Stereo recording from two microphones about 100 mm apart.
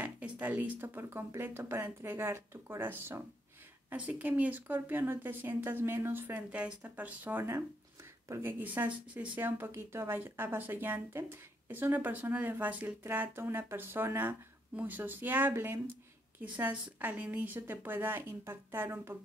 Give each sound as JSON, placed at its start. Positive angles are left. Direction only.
{"t": 0.0, "sound": "speech", "side_deg": -15}